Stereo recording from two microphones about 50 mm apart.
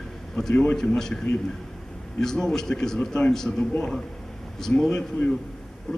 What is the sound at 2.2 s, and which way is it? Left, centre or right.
A man's voice, centre.